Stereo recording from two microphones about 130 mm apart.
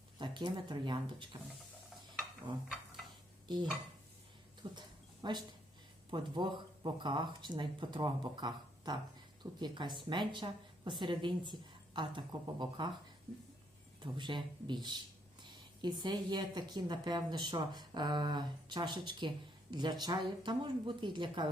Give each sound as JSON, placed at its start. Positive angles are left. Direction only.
{"t": 0.2, "sound": "speech", "side_deg": -35}
{"t": 3.4, "sound": "dishes", "side_deg": -35}
{"t": 4.6, "sound": "speech", "side_deg": -35}
{"t": 14.0, "sound": "speech", "side_deg": -35}